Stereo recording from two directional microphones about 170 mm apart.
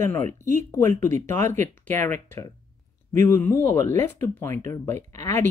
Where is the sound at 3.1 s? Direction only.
15° left (ahead or behind).